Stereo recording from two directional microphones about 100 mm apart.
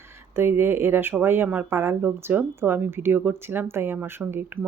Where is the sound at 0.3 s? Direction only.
25° right (ahead or behind).